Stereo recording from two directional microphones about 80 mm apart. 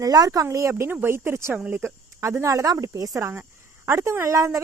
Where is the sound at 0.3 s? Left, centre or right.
Right.